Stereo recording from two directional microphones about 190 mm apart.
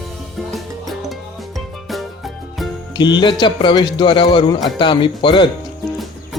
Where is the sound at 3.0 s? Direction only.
25° left (ahead or behind).